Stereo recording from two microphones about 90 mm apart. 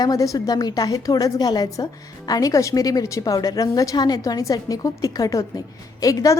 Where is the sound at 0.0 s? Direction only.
40° left (ahead or behind).